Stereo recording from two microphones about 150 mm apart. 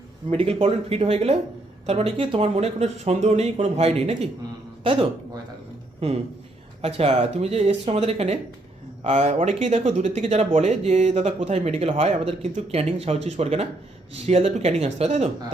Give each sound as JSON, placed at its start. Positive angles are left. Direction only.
{"t": 0.3, "sound": "a man's voice", "side_deg": -40}